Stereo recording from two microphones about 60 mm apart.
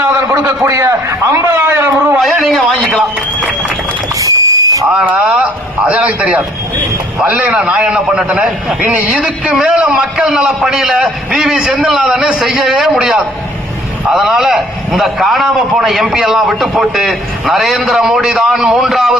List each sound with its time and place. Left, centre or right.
0.0 s a man's voice: right
1.5 s speech: right
2.2 s a man's voice: centre
4.2 s squeal: right
5.8 s a man's voice: right
7.5 s a man's voice: centre